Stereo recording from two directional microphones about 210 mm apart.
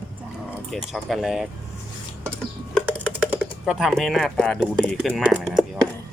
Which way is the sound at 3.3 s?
5° right (ahead or behind).